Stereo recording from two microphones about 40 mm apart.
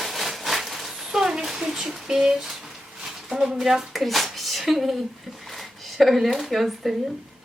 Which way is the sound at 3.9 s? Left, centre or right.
Centre.